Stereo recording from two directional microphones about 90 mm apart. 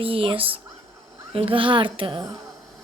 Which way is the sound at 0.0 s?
90° right.